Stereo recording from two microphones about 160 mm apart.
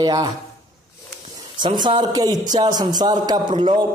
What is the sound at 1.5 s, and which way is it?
Speech, 30° right (ahead or behind).